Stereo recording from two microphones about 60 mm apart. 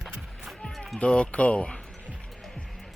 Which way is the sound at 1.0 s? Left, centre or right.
Centre.